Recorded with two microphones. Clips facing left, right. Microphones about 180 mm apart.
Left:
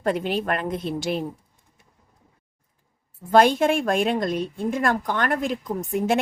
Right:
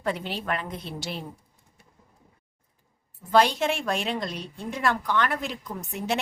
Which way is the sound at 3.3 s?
50° left (ahead or behind).